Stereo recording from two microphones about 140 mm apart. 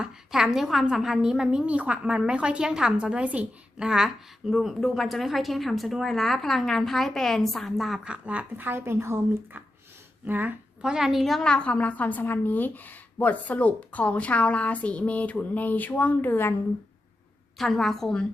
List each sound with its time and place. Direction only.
0.0 s a woman's voice: 5° right (ahead or behind); by 16.6 s 15° left (ahead or behind)
17.6 s a woman's voice: centre (ahead or behind)